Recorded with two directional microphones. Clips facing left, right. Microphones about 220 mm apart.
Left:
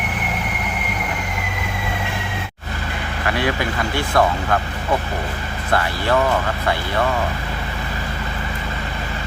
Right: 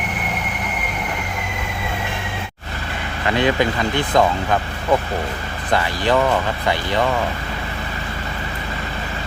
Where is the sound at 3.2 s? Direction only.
20° right (ahead or behind).